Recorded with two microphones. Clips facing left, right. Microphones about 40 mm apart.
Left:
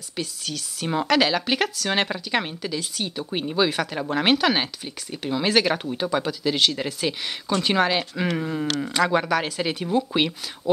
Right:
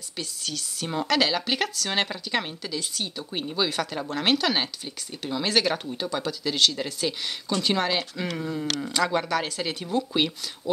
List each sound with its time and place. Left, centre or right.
0.2 s speech: centre
8.3 s speech: left
8.9 s speech: centre